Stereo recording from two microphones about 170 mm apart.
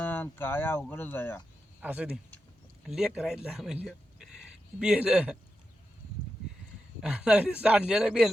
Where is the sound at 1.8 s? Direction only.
10° right (ahead or behind).